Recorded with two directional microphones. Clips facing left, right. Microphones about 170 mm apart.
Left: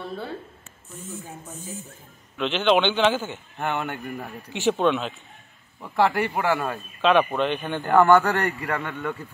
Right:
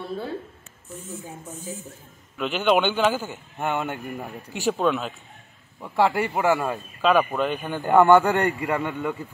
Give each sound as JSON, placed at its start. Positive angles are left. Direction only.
{"t": 2.3, "sound": "a man's voice", "side_deg": -5}
{"t": 7.9, "sound": "a man's voice", "side_deg": -20}